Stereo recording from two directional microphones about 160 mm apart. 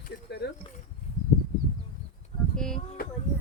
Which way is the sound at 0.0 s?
90° left.